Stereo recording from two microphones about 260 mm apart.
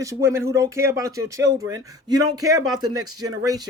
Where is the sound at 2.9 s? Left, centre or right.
Right.